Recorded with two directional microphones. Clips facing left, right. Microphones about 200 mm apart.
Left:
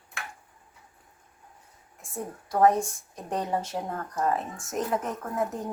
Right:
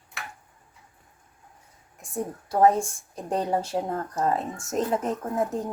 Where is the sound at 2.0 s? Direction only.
20° right (ahead or behind).